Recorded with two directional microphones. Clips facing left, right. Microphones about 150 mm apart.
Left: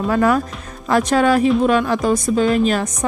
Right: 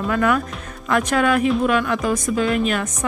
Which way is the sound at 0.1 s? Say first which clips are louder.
Left 3 dB; 35° left (ahead or behind).